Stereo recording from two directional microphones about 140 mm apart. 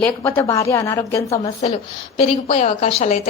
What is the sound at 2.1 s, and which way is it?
A woman's voice, 50° left (ahead or behind).